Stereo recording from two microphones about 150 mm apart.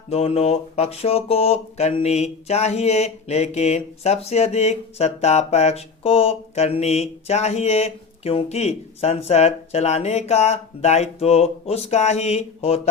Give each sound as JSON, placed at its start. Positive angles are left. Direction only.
{"t": 0.1, "sound": "speech", "side_deg": 45}